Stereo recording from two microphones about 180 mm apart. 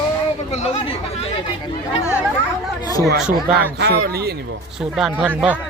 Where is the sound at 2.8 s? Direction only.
20° left (ahead or behind).